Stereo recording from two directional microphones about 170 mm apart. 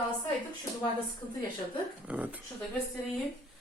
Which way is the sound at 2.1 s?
5° right (ahead or behind).